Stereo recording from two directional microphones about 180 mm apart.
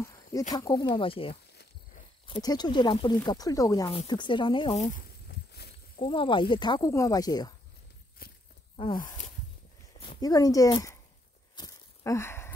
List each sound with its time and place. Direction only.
0.5 s speech: 20° left (ahead or behind)
1.3 s cricket: 65° left (ahead or behind)
2.2 s speech: 25° left (ahead or behind)
5.0 s a sound: 65° left (ahead or behind)
5.9 s speech: 30° left (ahead or behind)
8.2 s walk: 55° left (ahead or behind)
8.9 s speech: 45° left (ahead or behind)
9.9 s speech: 25° left (ahead or behind)
11.5 s a sound: 20° left (ahead or behind)